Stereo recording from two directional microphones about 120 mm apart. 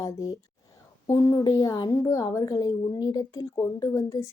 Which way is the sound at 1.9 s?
25° left (ahead or behind).